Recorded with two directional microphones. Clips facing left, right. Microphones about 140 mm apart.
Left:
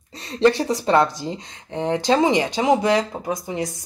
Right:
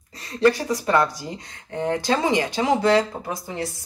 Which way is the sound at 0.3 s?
25° left (ahead or behind).